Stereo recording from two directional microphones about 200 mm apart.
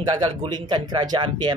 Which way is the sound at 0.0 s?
20° right (ahead or behind).